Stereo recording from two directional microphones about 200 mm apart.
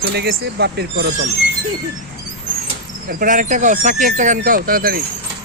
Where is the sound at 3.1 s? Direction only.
45° right (ahead or behind).